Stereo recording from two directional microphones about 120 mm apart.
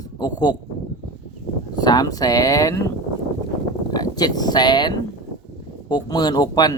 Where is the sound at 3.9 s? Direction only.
30° left (ahead or behind).